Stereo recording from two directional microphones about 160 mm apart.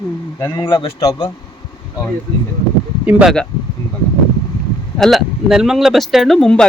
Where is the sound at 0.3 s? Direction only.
20° left (ahead or behind).